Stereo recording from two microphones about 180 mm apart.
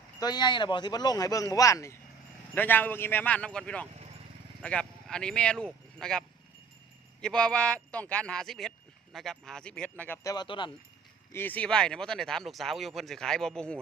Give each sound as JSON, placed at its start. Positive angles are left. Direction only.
{"t": 0.2, "sound": "a man's voice", "side_deg": 25}
{"t": 10.3, "sound": "speech", "side_deg": 25}
{"t": 11.3, "sound": "speech", "side_deg": 10}